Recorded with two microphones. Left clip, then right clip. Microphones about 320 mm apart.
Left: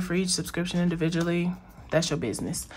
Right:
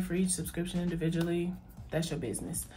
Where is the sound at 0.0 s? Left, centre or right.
Left.